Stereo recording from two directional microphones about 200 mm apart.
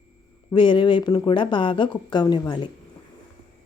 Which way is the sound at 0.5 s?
25° left (ahead or behind).